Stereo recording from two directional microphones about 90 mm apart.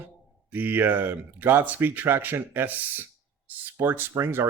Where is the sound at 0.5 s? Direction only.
20° right (ahead or behind).